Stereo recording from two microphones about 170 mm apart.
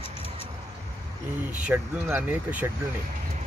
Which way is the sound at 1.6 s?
10° right (ahead or behind).